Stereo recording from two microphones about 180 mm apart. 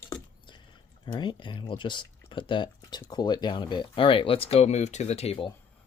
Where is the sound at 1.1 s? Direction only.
25° left (ahead or behind).